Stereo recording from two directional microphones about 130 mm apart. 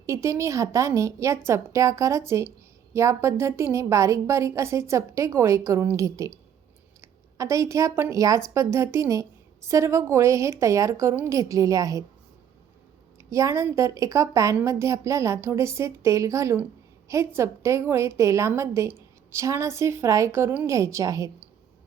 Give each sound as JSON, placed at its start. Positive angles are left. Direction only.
{"t": 0.0, "sound": "a woman's voice", "side_deg": -20}
{"t": 13.1, "sound": "a woman's voice", "side_deg": -25}